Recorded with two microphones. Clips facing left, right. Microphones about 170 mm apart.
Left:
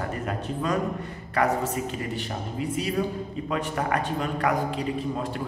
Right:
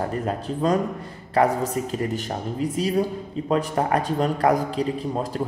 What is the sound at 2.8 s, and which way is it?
A man's voice, 35° right (ahead or behind).